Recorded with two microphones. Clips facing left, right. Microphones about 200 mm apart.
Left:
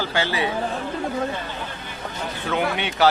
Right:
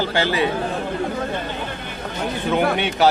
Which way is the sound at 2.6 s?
55° right (ahead or behind).